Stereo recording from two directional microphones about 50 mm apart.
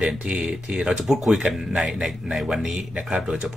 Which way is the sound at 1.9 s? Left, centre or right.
Centre.